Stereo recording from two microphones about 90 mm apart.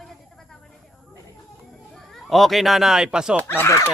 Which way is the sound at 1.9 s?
5° left (ahead or behind).